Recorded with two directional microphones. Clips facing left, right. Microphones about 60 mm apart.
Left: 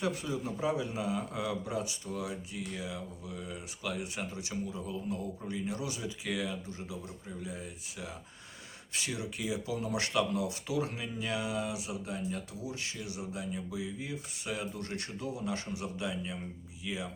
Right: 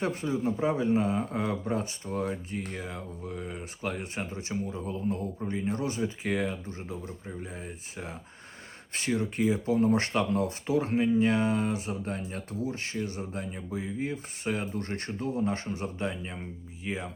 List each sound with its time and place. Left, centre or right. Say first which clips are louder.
0.0 s speech: right 5 dB; right